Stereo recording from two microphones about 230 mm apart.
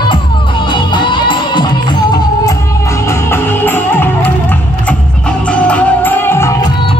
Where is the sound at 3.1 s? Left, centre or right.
Centre.